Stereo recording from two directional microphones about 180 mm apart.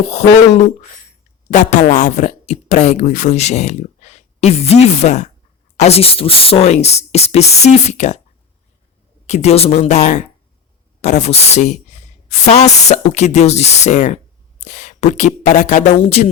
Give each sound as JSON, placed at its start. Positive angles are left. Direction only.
{"t": 0.1, "sound": "speech", "side_deg": 35}
{"t": 9.2, "sound": "speech", "side_deg": 35}